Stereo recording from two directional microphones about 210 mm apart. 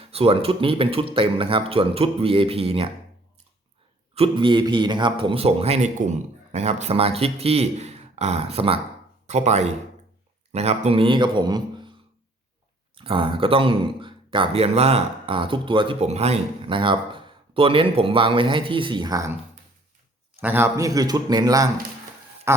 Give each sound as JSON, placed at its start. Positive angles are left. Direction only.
{"t": 0.0, "sound": "speech", "side_deg": -25}
{"t": 4.1, "sound": "speech", "side_deg": -25}
{"t": 13.0, "sound": "speech", "side_deg": -25}
{"t": 20.4, "sound": "a man's voice", "side_deg": -10}
{"t": 22.5, "sound": "duck", "side_deg": -10}